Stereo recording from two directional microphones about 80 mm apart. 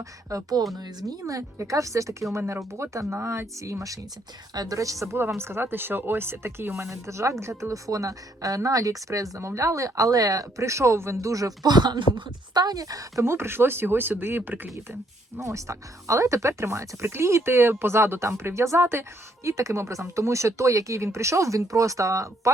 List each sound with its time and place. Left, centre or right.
0.0 s a woman's voice: right
0.8 s a woman's voice: right
5.4 s a woman's voice: right
15.4 s speech: right